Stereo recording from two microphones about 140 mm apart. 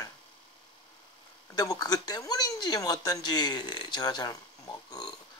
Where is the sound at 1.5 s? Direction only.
25° left (ahead or behind).